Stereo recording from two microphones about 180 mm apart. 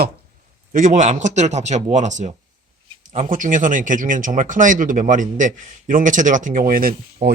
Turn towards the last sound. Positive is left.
turn(degrees=-50)  # may be behind; listen again after turning